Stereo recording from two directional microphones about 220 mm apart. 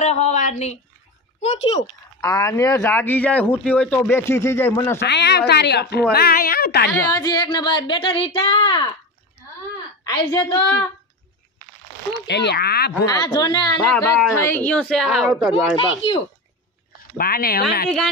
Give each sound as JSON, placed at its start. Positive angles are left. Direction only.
{"t": 0.0, "sound": "a woman's voice", "side_deg": 30}
{"t": 2.2, "sound": "a man's voice", "side_deg": 15}
{"t": 5.0, "sound": "a woman's voice", "side_deg": 50}
{"t": 6.9, "sound": "speech", "side_deg": 15}
{"t": 10.0, "sound": "a man's voice", "side_deg": 20}
{"t": 12.3, "sound": "a woman's voice", "side_deg": 50}
{"t": 13.0, "sound": "a man's voice", "side_deg": 15}
{"t": 14.4, "sound": "a woman's voice", "side_deg": 10}
{"t": 15.5, "sound": "speech", "side_deg": 25}
{"t": 17.2, "sound": "a woman's voice", "side_deg": 45}